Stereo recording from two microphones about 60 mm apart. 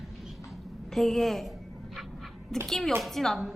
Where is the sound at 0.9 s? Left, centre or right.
Centre.